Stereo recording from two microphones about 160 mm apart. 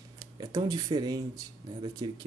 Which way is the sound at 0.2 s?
25° right (ahead or behind).